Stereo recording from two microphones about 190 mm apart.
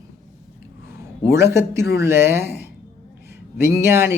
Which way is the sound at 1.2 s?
15° right (ahead or behind).